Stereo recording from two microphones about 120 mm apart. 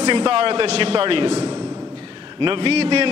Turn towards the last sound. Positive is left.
turn(degrees=-55)  # may be behind; listen again after turning